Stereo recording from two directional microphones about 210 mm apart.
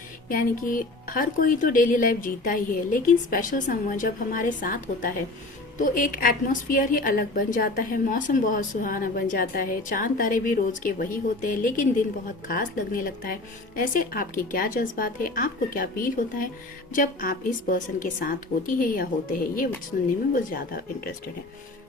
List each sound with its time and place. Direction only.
0.3 s a woman's voice: 40° left (ahead or behind)